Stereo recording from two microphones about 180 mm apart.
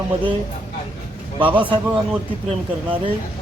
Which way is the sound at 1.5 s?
25° right (ahead or behind).